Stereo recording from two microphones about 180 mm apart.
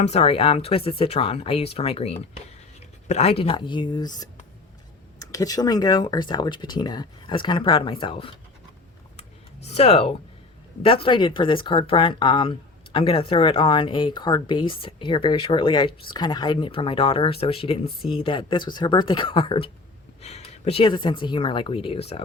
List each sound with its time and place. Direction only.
0.0 s speech: 35° left (ahead or behind)
9.6 s speech: 35° left (ahead or behind)